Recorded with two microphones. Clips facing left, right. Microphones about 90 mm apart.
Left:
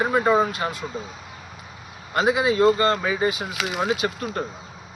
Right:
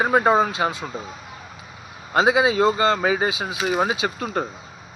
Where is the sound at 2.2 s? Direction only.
90° right.